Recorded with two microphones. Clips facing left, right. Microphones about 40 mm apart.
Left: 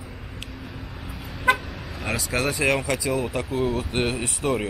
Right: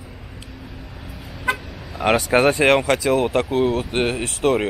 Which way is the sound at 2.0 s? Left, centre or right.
Right.